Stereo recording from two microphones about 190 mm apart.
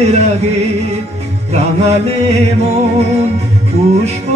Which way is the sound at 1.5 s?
35° right (ahead or behind).